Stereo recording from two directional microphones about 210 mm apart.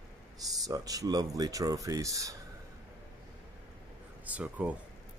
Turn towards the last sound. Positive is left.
turn(degrees=-5)  # may be behind; listen again after turning